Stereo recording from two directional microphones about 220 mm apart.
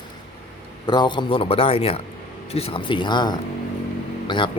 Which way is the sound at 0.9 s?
20° left (ahead or behind).